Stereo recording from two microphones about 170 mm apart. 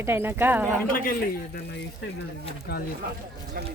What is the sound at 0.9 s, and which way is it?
Speech, 55° left (ahead or behind).